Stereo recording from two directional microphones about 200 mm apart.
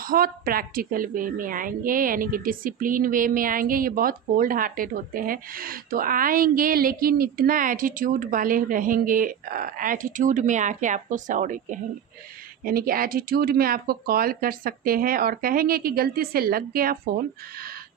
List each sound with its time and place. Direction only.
0.0 s a woman's voice: 45° right (ahead or behind)